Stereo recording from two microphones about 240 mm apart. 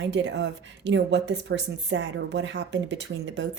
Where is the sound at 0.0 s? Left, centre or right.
Right.